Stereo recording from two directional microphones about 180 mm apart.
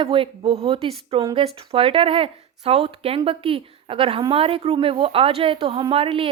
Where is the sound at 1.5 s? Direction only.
30° right (ahead or behind).